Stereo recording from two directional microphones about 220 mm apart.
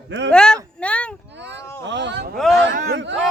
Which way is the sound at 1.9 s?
55° right (ahead or behind).